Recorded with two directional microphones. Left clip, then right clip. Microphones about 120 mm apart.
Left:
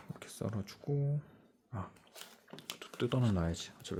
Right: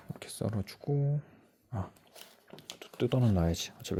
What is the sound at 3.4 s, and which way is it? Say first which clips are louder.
Speech: right 6 dB; 45° right (ahead or behind).